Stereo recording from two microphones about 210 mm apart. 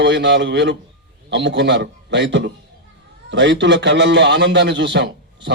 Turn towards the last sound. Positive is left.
turn(degrees=-60)  # may be behind; listen again after turning